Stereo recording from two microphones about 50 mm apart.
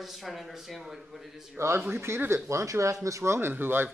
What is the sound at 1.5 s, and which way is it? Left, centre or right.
Speech, right.